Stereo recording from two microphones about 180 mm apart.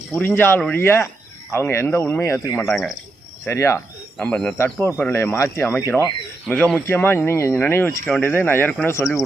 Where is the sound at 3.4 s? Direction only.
15° left (ahead or behind).